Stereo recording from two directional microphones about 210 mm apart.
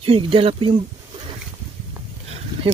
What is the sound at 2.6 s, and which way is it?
Speech, 25° right (ahead or behind).